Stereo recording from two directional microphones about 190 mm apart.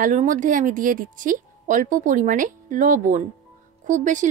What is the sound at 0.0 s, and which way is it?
A woman's voice, 40° right (ahead or behind).